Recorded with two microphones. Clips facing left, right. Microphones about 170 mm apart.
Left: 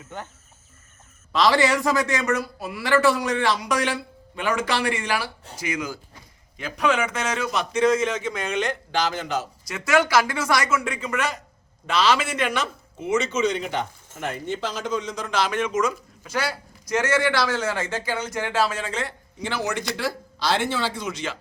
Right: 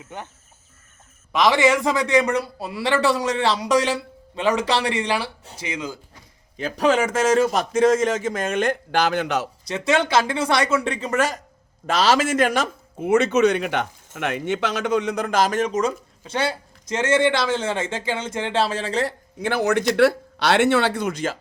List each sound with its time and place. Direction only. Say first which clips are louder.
1.3 s a man's voice: right 2 dB; 20° right (ahead or behind); by 9.5 s 70° right (ahead or behind)
9.6 s a man's voice: even; 30° right (ahead or behind)
19.4 s speech: right 7 dB; 55° right (ahead or behind)